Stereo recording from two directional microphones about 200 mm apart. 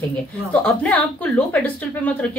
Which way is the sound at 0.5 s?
5° left (ahead or behind).